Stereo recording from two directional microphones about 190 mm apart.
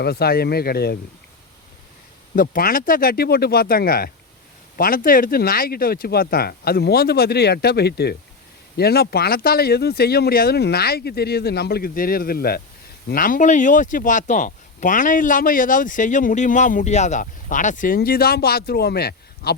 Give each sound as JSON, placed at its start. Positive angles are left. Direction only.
{"t": 0.0, "sound": "speech", "side_deg": 55}
{"t": 2.3, "sound": "speech", "side_deg": 50}